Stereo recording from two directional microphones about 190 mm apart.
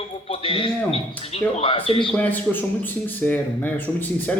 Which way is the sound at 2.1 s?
10° left (ahead or behind).